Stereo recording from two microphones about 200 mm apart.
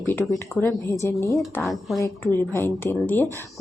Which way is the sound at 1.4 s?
Centre (ahead or behind).